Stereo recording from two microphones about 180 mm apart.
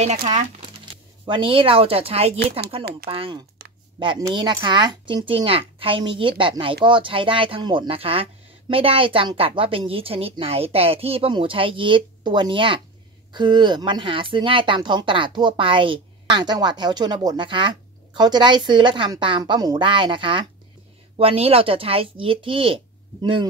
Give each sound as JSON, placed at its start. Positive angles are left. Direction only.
{"t": 0.0, "sound": "speech", "side_deg": -35}
{"t": 1.2, "sound": "a woman's voice", "side_deg": -25}